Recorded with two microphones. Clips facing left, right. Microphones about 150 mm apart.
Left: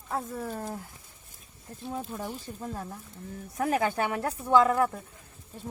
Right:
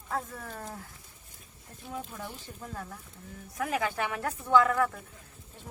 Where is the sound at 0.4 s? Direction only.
25° left (ahead or behind).